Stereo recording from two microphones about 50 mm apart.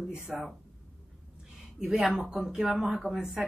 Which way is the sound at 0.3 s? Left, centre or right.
Centre.